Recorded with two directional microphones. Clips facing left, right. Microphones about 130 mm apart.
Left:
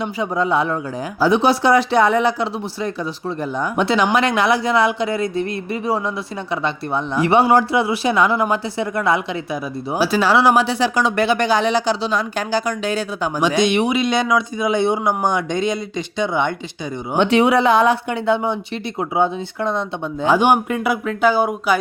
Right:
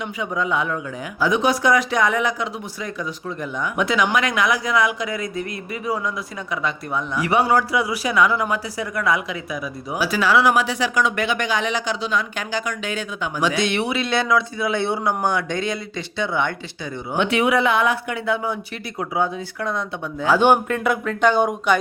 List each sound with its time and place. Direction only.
0.0 s speech: 35° left (ahead or behind)
13.6 s speech: 15° left (ahead or behind)
17.2 s speech: 30° left (ahead or behind)
20.2 s speech: 15° left (ahead or behind)